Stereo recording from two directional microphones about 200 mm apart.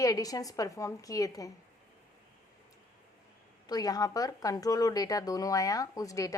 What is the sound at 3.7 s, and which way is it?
Speech, 20° left (ahead or behind).